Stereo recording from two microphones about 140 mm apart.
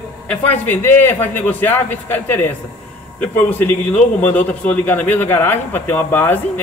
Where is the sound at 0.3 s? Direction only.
10° left (ahead or behind).